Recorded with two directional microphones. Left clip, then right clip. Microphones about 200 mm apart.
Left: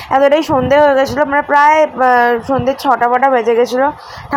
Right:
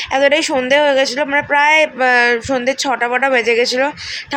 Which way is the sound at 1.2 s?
5° left (ahead or behind).